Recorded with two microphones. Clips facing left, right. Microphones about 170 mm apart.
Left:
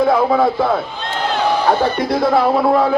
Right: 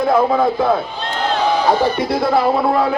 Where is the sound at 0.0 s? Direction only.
Centre (ahead or behind).